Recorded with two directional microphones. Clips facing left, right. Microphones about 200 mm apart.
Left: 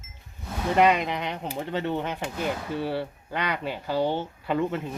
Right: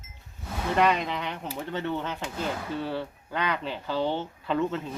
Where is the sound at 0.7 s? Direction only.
15° left (ahead or behind).